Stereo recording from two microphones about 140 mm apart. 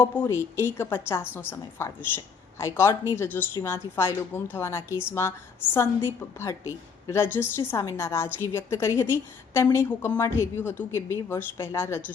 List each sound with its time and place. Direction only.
0.0 s a woman's voice: 15° left (ahead or behind)